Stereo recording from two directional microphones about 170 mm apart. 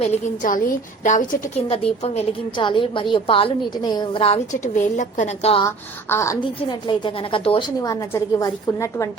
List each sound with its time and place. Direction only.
0.0 s a woman's voice: 45° left (ahead or behind)
1.6 s a woman's voice: 35° left (ahead or behind)
5.6 s speech: 15° left (ahead or behind)
6.4 s a woman's voice: 30° left (ahead or behind)
7.8 s a woman's voice: 20° left (ahead or behind)